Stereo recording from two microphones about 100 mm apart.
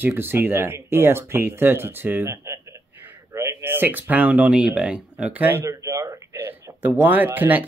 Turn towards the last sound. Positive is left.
turn(degrees=-20)  # may be behind; listen again after turning